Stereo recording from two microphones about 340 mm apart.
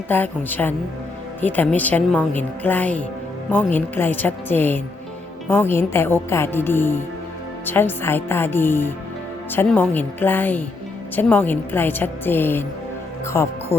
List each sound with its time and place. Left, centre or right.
0.1 s a woman's voice: centre